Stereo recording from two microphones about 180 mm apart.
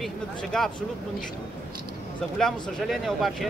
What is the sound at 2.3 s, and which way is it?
Speech, 5° left (ahead or behind).